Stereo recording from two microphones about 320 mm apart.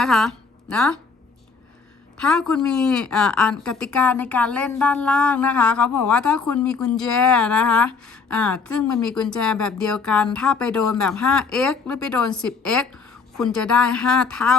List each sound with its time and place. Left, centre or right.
0.0 s a woman's voice: centre
2.1 s a woman's voice: centre